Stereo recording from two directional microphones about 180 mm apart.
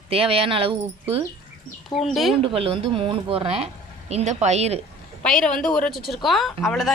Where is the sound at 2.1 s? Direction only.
Centre (ahead or behind).